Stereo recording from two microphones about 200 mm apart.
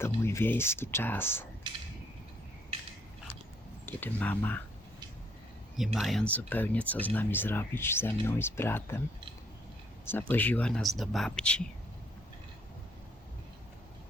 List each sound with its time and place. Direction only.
0.0 s speech: 15° left (ahead or behind)
1.7 s a sound: 25° right (ahead or behind)
3.8 s speech: 10° left (ahead or behind)
5.7 s speech: centre (ahead or behind)
10.1 s speech: 10° left (ahead or behind)